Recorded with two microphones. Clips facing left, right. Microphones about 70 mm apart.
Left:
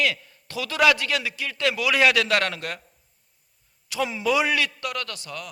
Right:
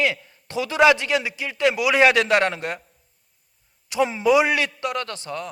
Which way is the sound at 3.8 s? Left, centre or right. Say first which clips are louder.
Right 5 dB; right.